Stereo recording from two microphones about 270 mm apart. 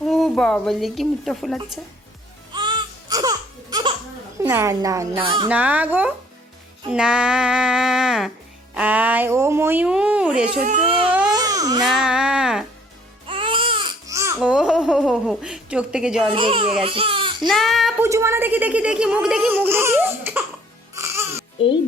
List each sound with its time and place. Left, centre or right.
0.0 s speech: centre
2.5 s baby cry: centre
4.4 s a child's voice: centre
5.5 s speech: centre
10.6 s speech: right
11.1 s baby cry: centre
11.9 s music: centre
13.2 s babbling: centre
16.3 s speech: centre
17.5 s a child's voice: centre